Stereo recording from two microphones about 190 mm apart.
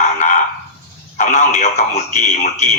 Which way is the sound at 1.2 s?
40° left (ahead or behind).